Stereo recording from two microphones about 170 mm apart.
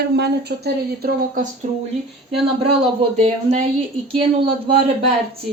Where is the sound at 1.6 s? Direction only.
45° right (ahead or behind).